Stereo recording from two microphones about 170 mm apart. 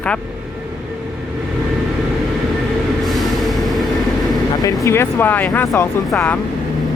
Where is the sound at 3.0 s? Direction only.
Centre (ahead or behind).